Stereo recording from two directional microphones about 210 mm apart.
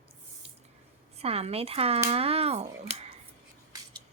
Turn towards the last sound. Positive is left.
turn(degrees=-30)  # may be behind; listen again after turning